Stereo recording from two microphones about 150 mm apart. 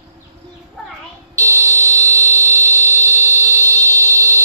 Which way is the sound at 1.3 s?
20° right (ahead or behind).